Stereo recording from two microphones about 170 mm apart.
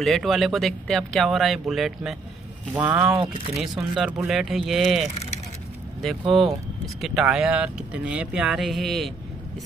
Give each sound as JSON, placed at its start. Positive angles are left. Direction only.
{"t": 0.0, "sound": "speech", "side_deg": 0}
{"t": 2.7, "sound": "speech", "side_deg": -15}
{"t": 3.6, "sound": "speech", "side_deg": -5}
{"t": 6.3, "sound": "speech", "side_deg": 0}